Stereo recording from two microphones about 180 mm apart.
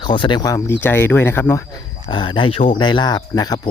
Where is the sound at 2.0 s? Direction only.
25° left (ahead or behind).